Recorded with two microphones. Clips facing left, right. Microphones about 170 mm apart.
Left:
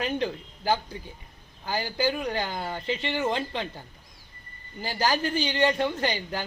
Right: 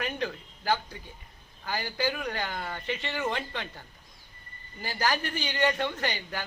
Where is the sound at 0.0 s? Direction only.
25° left (ahead or behind).